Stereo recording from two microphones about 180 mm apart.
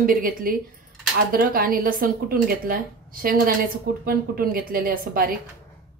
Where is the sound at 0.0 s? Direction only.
50° right (ahead or behind).